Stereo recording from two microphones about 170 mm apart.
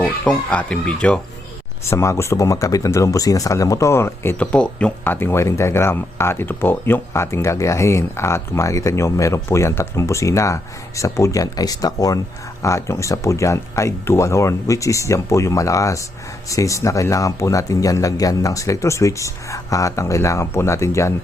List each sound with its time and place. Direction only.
0.0 s speech: 5° left (ahead or behind)
1.8 s speech: 15° left (ahead or behind)